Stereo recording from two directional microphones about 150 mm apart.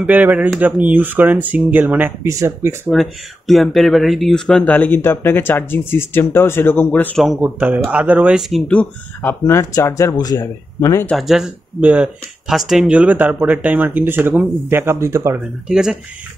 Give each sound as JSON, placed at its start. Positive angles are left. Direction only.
{"t": 0.0, "sound": "speech", "side_deg": -10}
{"t": 2.9, "sound": "speech", "side_deg": 0}
{"t": 7.2, "sound": "speech", "side_deg": 0}
{"t": 11.1, "sound": "speech", "side_deg": 0}
{"t": 15.7, "sound": "speech", "side_deg": -5}